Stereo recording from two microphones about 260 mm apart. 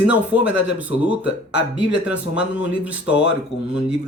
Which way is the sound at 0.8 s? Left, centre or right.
Centre.